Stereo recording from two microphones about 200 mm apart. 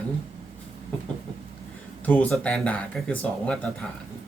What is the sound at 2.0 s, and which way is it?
Speech, 5° left (ahead or behind).